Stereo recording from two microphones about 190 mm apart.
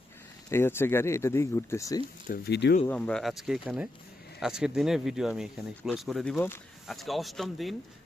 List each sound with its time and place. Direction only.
0.5 s speech: 10° left (ahead or behind)
2.3 s speech: 60° left (ahead or behind)
2.8 s speech: 5° left (ahead or behind)